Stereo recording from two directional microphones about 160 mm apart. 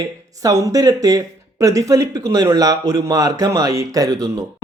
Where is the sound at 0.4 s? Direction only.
20° right (ahead or behind).